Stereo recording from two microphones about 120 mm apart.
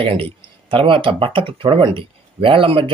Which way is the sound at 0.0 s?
45° right (ahead or behind).